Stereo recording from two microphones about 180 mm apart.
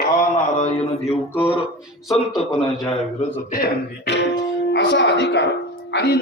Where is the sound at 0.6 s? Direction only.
35° left (ahead or behind).